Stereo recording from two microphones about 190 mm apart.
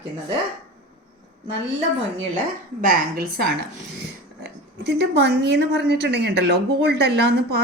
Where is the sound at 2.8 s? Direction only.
50° right (ahead or behind).